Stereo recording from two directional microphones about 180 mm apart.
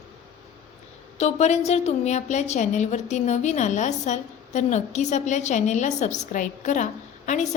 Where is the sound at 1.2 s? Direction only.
40° left (ahead or behind).